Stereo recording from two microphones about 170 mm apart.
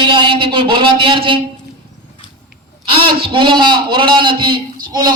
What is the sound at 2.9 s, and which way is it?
A man's voice, 30° right (ahead or behind).